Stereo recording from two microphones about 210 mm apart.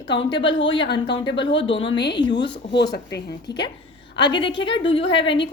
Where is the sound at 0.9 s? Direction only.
20° left (ahead or behind).